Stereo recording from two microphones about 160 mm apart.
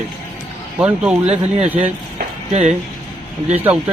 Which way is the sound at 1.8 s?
45° right (ahead or behind).